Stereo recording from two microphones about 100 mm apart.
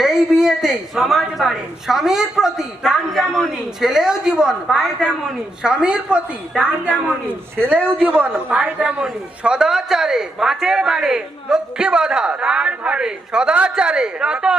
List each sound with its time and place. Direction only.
0.0 s a woman's voice: 5° right (ahead or behind)
7.5 s a man's voice: 20° right (ahead or behind)